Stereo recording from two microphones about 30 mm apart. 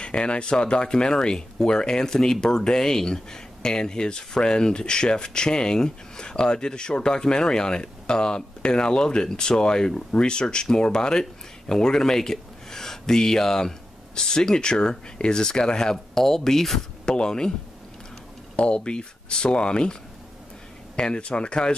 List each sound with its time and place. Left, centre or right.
0.0 s speech: left
16.2 s speech: centre
17.0 s speech: left
18.6 s speech: left